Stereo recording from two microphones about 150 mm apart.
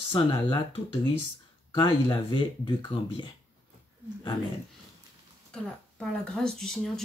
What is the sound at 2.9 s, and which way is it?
Speech, 40° left (ahead or behind).